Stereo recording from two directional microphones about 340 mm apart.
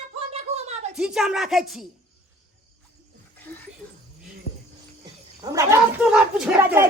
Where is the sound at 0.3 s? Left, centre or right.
Centre.